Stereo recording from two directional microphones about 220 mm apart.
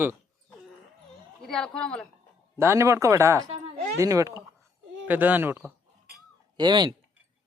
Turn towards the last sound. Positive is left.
turn(degrees=-20)  # may be behind; listen again after turning